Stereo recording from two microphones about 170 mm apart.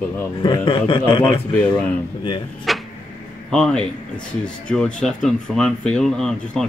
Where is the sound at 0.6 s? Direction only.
30° left (ahead or behind).